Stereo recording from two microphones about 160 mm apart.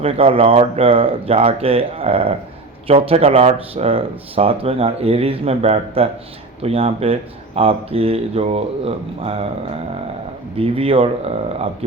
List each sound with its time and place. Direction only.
0.0 s speech: 35° right (ahead or behind)
10.6 s speech: 35° right (ahead or behind)